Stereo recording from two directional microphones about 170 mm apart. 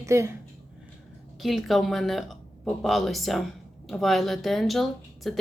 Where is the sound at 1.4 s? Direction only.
Centre (ahead or behind).